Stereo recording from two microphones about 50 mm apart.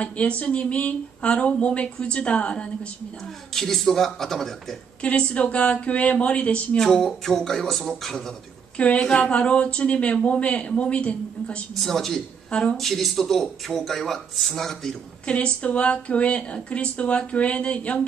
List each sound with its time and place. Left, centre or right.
0.0 s speech: left
3.5 s a man's voice: centre
5.0 s speech: left
6.8 s speech: centre
8.7 s speech: left
11.8 s a man's voice: centre
12.4 s speech: left
12.7 s speech: centre
15.2 s speech: left